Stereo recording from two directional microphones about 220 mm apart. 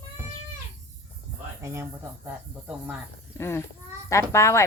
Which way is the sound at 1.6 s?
10° right (ahead or behind).